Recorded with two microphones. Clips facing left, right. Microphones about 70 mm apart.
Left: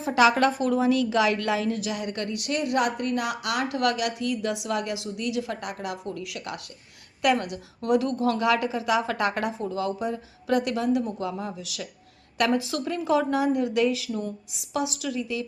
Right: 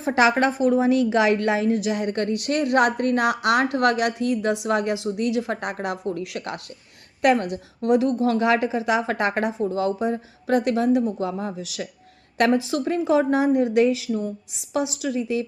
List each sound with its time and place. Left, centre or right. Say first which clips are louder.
0.0 s a woman's voice: right 1 dB; right